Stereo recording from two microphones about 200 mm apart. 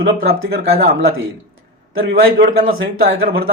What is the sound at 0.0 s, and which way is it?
A man's voice, 55° right (ahead or behind).